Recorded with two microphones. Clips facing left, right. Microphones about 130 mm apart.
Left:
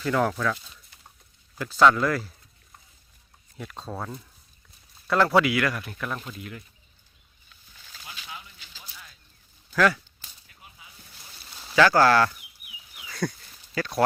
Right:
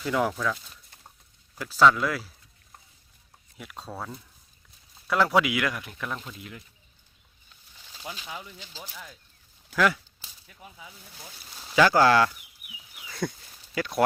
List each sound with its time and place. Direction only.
0.0 s speech: 5° right (ahead or behind)
1.5 s speech: 5° right (ahead or behind)
3.6 s speech: 5° right (ahead or behind)
8.1 s speech: 35° right (ahead or behind)
9.7 s speech: 15° right (ahead or behind)
11.7 s speech: 15° right (ahead or behind)
13.1 s a sound: 20° right (ahead or behind)
13.8 s speech: 20° right (ahead or behind)